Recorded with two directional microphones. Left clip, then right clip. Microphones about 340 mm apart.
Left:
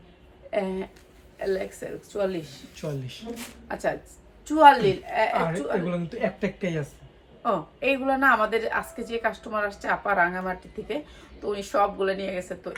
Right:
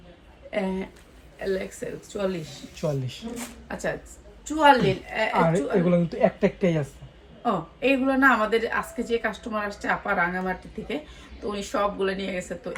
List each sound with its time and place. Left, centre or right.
0.5 s a woman's voice: centre
2.7 s speech: centre
3.3 s a woman's voice: centre
5.5 s speech: centre
7.4 s a woman's voice: centre